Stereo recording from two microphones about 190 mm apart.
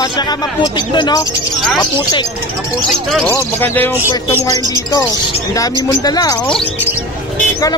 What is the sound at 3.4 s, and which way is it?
Speech, 10° left (ahead or behind).